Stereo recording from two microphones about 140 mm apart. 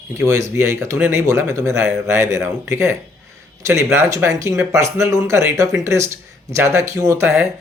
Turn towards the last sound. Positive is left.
turn(degrees=-20)  # may be behind; listen again after turning